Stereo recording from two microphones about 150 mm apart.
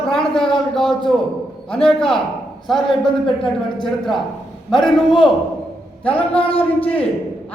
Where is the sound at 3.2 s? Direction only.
35° left (ahead or behind).